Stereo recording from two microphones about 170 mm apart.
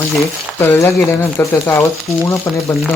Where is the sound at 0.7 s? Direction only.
15° left (ahead or behind).